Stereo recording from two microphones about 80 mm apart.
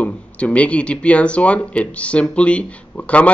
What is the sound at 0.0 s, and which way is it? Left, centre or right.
Speech, centre.